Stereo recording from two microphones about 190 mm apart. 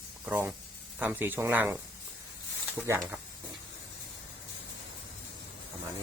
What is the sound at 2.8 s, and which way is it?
Speech, 15° right (ahead or behind).